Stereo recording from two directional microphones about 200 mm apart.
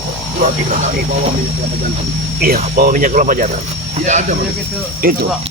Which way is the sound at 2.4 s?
45° right (ahead or behind).